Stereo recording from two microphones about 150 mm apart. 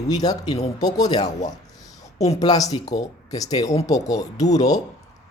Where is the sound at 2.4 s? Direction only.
25° left (ahead or behind).